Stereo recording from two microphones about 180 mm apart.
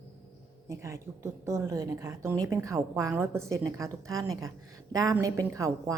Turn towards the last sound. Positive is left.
turn(degrees=-15)  # may be behind; listen again after turning